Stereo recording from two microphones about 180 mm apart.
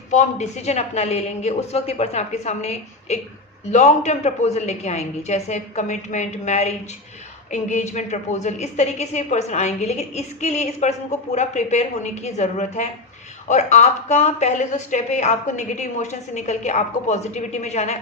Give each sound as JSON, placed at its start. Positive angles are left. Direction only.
{"t": 0.1, "sound": "a woman's voice", "side_deg": 40}